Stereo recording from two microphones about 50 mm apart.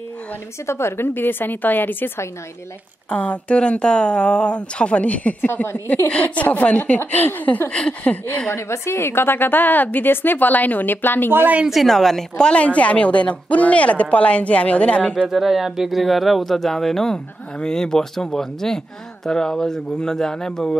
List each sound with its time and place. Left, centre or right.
0.7 s a woman's voice: left
3.1 s a woman's voice: left
7.7 s a woman's voice: left
8.5 s a woman's voice: left
11.6 s a woman's voice: centre
12.4 s a woman's voice: left
15.2 s speech: centre